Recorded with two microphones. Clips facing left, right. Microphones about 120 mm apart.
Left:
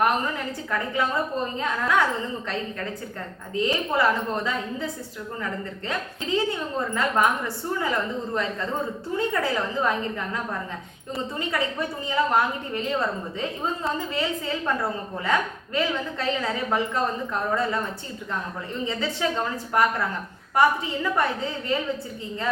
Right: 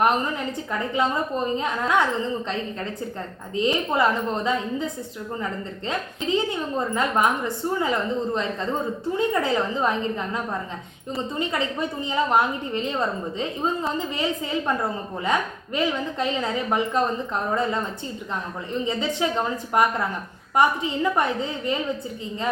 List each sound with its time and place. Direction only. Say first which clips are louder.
0.7 s a woman's voice: right 1 dB; 20° right (ahead or behind)
3.5 s a woman's voice: right 1 dB; 20° right (ahead or behind)
5.9 s a woman's voice: right 2 dB; 20° right (ahead or behind)